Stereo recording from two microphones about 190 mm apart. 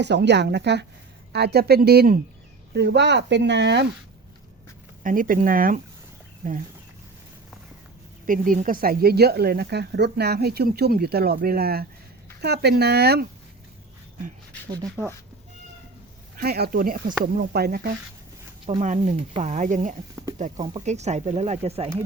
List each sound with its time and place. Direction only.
0.0 s speech: 65° right (ahead or behind)
5.0 s speech: 45° right (ahead or behind)
8.3 s speech: 45° right (ahead or behind)
14.7 s speech: 20° right (ahead or behind)
16.4 s speech: 55° right (ahead or behind)
18.8 s speech: 40° right (ahead or behind)